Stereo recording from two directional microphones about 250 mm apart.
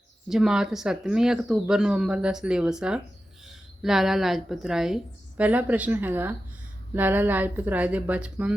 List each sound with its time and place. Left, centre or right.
0.3 s a woman's voice: centre